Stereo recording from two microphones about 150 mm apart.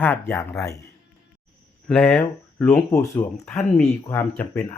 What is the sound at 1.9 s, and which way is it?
Speech, 5° left (ahead or behind).